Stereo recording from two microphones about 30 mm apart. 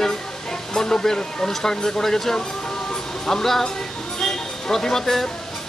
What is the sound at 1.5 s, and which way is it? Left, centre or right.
Speech, centre.